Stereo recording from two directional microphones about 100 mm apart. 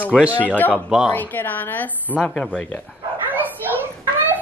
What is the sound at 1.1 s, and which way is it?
Speech, 20° left (ahead or behind).